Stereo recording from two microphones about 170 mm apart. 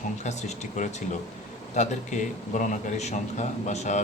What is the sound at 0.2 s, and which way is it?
A man's voice, 40° left (ahead or behind).